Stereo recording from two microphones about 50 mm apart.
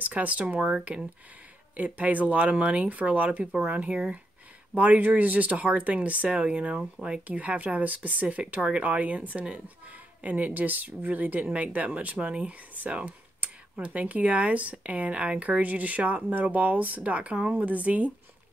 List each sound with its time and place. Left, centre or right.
0.0 s speech: right
1.8 s speech: right